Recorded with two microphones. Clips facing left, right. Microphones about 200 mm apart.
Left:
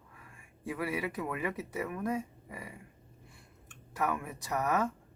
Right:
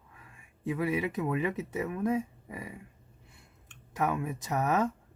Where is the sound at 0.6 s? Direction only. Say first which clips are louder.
Right 5 dB; 20° right (ahead or behind).